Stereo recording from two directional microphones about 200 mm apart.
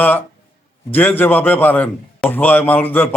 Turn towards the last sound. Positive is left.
turn(degrees=10)  # may be behind; listen again after turning